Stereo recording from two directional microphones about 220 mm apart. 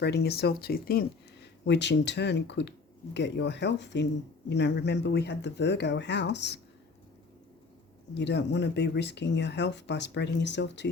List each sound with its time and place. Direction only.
0.0 s speech: 50° left (ahead or behind)
8.1 s speech: 50° left (ahead or behind)